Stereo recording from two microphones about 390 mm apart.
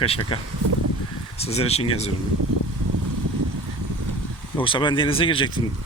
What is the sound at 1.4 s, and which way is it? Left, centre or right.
Speech, centre.